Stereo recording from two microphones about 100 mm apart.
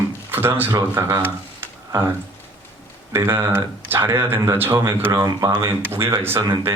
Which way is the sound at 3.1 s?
25° right (ahead or behind).